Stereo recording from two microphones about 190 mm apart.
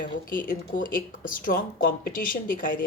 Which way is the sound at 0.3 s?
45° left (ahead or behind).